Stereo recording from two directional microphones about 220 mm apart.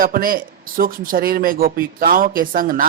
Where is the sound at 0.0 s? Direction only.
40° right (ahead or behind).